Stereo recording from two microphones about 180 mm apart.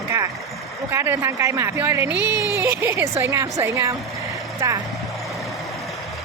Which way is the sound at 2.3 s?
20° left (ahead or behind).